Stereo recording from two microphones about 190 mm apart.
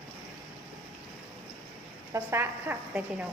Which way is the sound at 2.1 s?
10° right (ahead or behind).